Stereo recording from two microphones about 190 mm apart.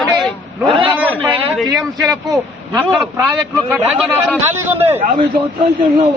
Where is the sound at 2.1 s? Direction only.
20° right (ahead or behind).